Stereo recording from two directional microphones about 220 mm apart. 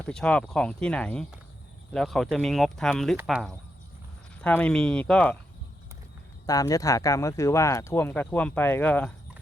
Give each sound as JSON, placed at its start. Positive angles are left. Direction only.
{"t": 0.0, "sound": "speech", "side_deg": 5}
{"t": 6.4, "sound": "speech", "side_deg": 15}